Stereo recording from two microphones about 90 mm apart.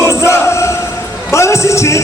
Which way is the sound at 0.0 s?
30° left (ahead or behind).